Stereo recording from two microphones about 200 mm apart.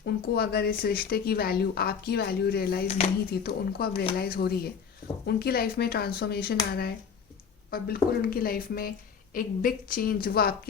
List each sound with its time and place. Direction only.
0.0 s speech: 50° left (ahead or behind)